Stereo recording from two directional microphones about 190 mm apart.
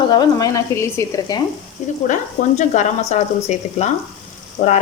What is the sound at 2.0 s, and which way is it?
Speech, 40° left (ahead or behind).